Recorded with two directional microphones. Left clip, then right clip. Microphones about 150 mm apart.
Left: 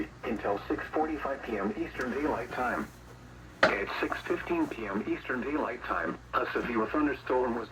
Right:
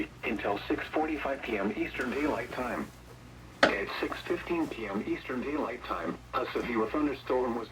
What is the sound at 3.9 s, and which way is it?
Speech, 15° right (ahead or behind).